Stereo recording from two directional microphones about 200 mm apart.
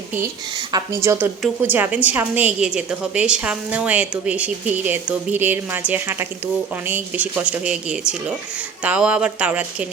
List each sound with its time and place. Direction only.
0.5 s a woman's voice: 20° right (ahead or behind)